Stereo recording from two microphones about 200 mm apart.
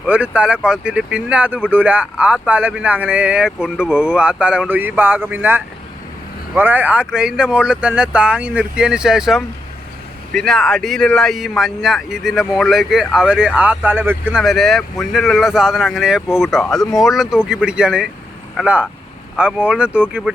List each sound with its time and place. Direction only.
0.0 s speech: 5° right (ahead or behind)